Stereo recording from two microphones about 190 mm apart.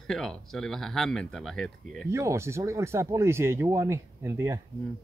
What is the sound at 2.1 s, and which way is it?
Speech, 15° right (ahead or behind).